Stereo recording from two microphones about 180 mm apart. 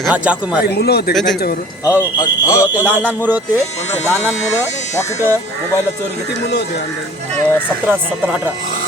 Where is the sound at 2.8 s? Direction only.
10° right (ahead or behind).